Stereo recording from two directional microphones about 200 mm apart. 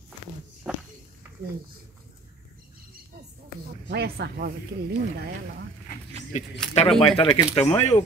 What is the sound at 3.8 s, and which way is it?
Speech, 55° right (ahead or behind).